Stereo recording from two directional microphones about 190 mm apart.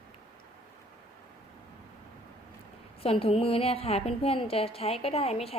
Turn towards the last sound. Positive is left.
turn(degrees=30)  # may be behind; listen again after turning